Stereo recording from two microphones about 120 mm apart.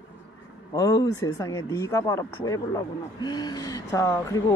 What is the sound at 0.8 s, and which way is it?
Speech, 30° left (ahead or behind).